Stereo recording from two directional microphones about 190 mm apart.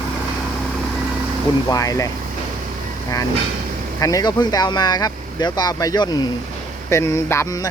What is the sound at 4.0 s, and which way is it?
A man's voice, 20° left (ahead or behind).